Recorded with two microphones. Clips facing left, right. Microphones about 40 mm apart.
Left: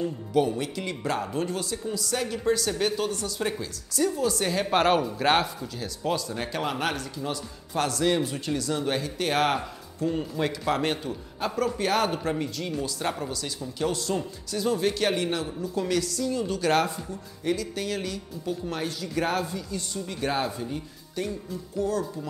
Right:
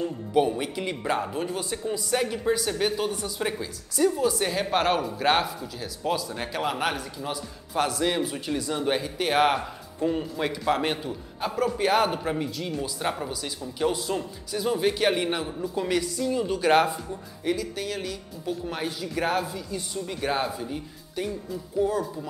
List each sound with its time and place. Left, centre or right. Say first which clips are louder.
0.0 s speech: right 1 dB; centre
1.6 s speech: right 1 dB; right
17.5 s speech: even; centre